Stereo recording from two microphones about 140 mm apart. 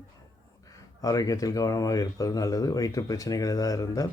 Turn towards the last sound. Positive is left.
turn(degrees=25)  # may be behind; listen again after turning